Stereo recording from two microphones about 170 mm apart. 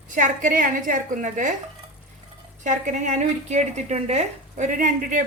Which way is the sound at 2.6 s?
45° right (ahead or behind).